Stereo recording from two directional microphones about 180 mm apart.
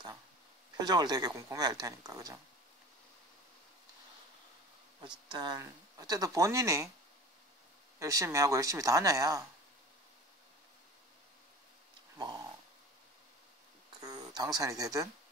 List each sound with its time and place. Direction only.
0.7 s speech: 25° right (ahead or behind)
5.3 s speech: 25° right (ahead or behind)
8.0 s speech: 20° right (ahead or behind)
14.0 s speech: 20° right (ahead or behind)